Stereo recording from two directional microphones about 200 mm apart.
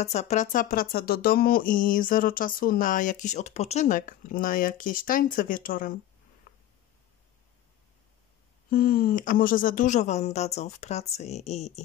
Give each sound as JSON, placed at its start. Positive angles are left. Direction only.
{"t": 0.0, "sound": "speech", "side_deg": 35}
{"t": 6.5, "sound": "a sound", "side_deg": 50}
{"t": 8.6, "sound": "speech", "side_deg": 45}